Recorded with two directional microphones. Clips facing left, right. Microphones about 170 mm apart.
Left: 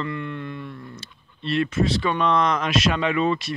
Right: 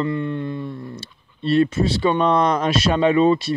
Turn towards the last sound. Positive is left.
turn(degrees=-30)  # may be behind; listen again after turning